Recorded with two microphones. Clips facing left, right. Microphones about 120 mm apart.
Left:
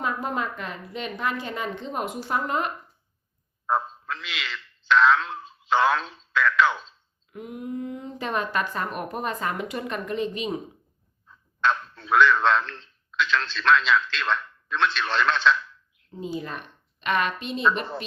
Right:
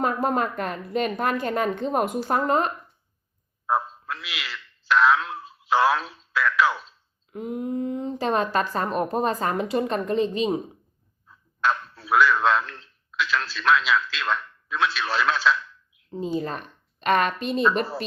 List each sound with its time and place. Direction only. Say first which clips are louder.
0.0 s a woman's voice: right 5 dB; 45° right (ahead or behind)
3.7 s speech: right 1 dB; 5° right (ahead or behind)
7.3 s speech: right 5 dB; 30° right (ahead or behind)
11.3 s a man's voice: even; 5° right (ahead or behind)
16.1 s a woman's voice: right 5 dB; 35° right (ahead or behind)